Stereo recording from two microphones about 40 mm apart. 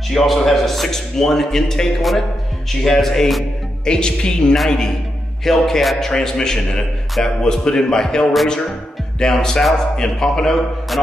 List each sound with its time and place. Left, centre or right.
0.1 s a man's voice: centre
3.8 s a man's voice: left